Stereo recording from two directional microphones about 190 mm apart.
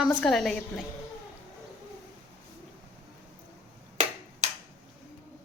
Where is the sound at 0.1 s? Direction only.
5° left (ahead or behind).